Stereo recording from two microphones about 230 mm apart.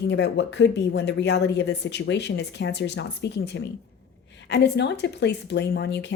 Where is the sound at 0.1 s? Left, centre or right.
Left.